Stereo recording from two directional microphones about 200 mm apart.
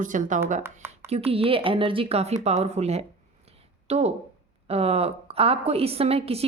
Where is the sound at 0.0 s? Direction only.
40° right (ahead or behind).